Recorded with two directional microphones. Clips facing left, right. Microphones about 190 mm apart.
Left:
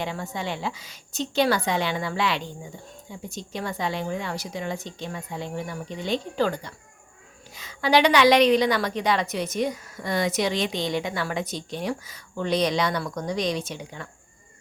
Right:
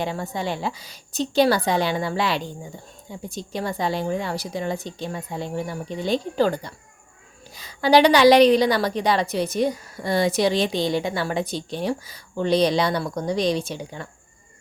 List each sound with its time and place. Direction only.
0.0 s a woman's voice: 35° right (ahead or behind)